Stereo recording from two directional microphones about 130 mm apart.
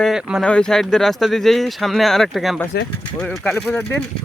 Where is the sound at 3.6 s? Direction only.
15° left (ahead or behind).